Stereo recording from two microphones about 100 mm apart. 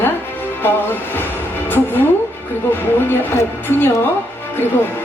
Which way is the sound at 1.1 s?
20° left (ahead or behind).